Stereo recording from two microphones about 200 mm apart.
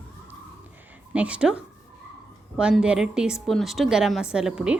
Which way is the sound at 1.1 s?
5° right (ahead or behind).